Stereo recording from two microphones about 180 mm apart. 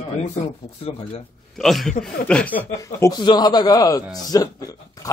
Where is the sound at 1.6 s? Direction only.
Centre (ahead or behind).